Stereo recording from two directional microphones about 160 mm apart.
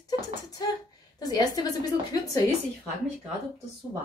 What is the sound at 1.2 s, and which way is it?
A woman's voice, 25° left (ahead or behind).